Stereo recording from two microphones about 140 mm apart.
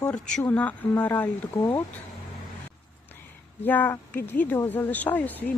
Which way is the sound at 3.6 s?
10° left (ahead or behind).